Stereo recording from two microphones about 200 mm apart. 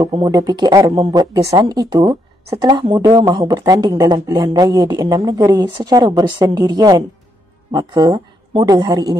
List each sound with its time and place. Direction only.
0.1 s speech: 20° right (ahead or behind)